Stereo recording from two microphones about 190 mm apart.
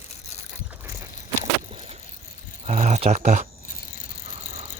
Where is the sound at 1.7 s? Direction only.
30° right (ahead or behind).